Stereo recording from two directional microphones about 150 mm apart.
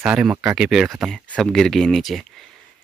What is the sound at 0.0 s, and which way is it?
Speech, 10° right (ahead or behind).